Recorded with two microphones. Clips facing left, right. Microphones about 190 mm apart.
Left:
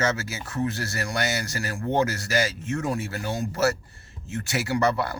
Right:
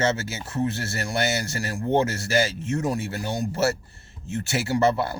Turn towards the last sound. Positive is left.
turn(degrees=-25)  # may be behind; listen again after turning